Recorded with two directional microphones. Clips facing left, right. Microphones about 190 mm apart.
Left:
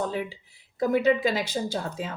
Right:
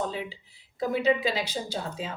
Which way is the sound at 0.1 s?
50° left (ahead or behind).